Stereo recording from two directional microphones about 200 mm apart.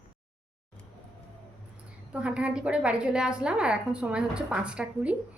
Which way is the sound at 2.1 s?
5° right (ahead or behind).